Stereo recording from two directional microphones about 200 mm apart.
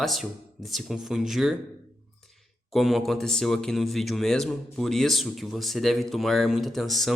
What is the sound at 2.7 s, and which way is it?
Speech, centre (ahead or behind).